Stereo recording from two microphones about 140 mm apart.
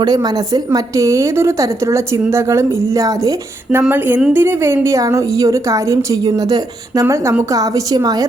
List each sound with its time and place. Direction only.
0.0 s speech: 30° right (ahead or behind)